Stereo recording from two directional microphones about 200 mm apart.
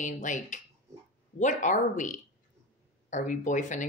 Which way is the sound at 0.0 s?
40° left (ahead or behind).